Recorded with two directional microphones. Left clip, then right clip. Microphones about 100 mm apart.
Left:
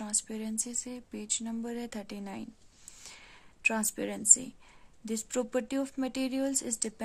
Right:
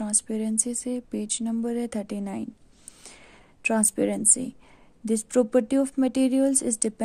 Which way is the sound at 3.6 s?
40° right (ahead or behind).